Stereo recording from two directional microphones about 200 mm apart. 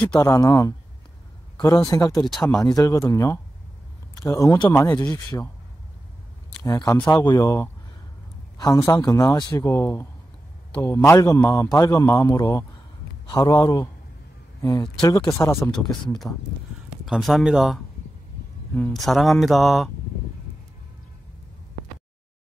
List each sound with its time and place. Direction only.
0.2 s a man's voice: 15° left (ahead or behind)
2.3 s speech: centre (ahead or behind)
2.6 s a man's voice: 15° left (ahead or behind)
6.6 s a man's voice: 20° left (ahead or behind); by 17.7 s centre (ahead or behind)
18.8 s speech: 5° left (ahead or behind)